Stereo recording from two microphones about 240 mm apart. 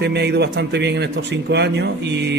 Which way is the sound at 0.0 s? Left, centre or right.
Right.